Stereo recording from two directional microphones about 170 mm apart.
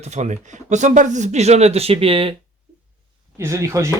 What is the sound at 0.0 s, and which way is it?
Speech, 45° right (ahead or behind).